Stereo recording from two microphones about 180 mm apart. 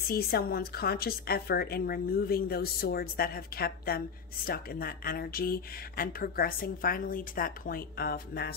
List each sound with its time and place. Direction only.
0.0 s speech: 55° left (ahead or behind)